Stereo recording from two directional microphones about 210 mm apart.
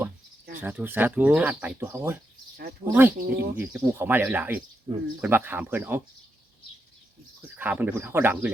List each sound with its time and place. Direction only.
0.6 s speech: 10° right (ahead or behind)
3.2 s speech: 50° right (ahead or behind)
3.6 s speech: 10° right (ahead or behind)
4.9 s speech: 30° right (ahead or behind)
5.2 s speech: 10° right (ahead or behind)
7.5 s speech: 5° right (ahead or behind)